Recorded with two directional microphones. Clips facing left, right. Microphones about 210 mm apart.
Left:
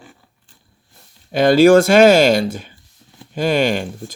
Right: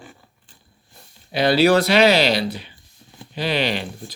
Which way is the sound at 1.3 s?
50° left (ahead or behind).